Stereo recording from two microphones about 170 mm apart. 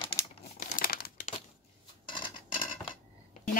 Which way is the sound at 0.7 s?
60° left (ahead or behind).